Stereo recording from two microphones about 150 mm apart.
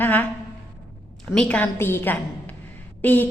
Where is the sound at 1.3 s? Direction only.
10° left (ahead or behind).